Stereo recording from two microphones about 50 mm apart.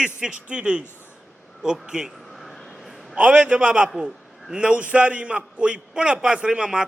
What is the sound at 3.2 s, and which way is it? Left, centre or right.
A man's voice, right.